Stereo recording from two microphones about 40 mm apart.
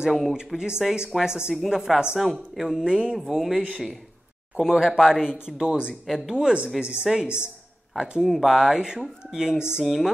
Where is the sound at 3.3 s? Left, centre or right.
Centre.